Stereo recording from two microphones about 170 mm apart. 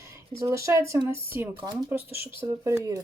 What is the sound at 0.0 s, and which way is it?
Speech, 15° right (ahead or behind).